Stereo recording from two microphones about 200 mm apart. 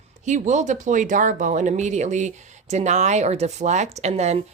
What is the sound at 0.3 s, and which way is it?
Speech, 35° right (ahead or behind).